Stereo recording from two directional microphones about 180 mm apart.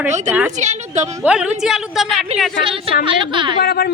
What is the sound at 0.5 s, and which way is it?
Speech, 40° right (ahead or behind).